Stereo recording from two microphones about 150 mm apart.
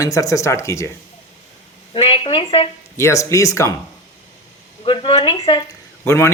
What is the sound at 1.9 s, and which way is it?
Speech, 40° left (ahead or behind).